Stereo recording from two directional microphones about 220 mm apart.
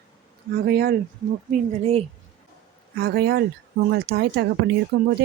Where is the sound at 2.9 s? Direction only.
45° right (ahead or behind).